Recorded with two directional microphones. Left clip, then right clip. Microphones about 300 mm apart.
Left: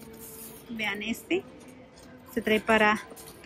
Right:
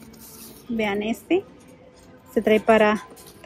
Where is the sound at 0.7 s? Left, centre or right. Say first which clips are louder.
Right 7 dB; centre.